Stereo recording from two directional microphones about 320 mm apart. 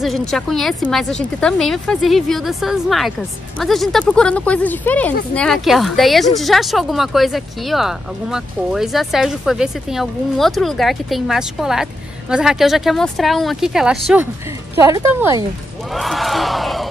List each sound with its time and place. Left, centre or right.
0.0 s speech: centre
15.9 s crowd: centre